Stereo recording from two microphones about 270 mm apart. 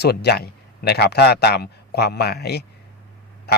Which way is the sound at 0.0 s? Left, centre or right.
Left.